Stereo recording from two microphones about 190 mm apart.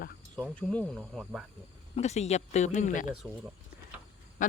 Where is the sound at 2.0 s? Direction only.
35° left (ahead or behind).